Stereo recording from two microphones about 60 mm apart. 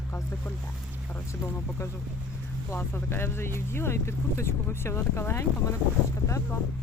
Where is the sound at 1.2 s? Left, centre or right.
Left.